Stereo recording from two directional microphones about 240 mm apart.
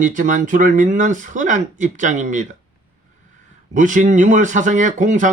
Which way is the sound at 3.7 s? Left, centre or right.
Right.